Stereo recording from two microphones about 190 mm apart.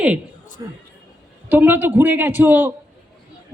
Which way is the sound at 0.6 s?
20° right (ahead or behind).